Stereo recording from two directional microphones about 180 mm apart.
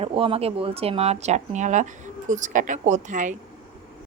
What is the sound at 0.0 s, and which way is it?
Speech, 30° right (ahead or behind).